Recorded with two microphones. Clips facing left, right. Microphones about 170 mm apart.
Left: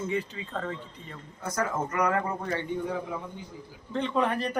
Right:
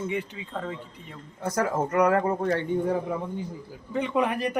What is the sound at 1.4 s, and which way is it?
Speech, 55° right (ahead or behind).